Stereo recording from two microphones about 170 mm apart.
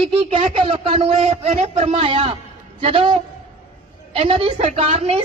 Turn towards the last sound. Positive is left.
turn(degrees=-40)  # may be behind; listen again after turning